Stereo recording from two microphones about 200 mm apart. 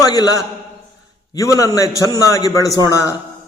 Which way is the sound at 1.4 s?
15° left (ahead or behind).